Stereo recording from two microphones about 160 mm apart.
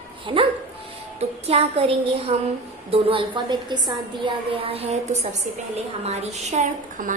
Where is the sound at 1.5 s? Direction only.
35° right (ahead or behind); by 7.1 s 55° right (ahead or behind).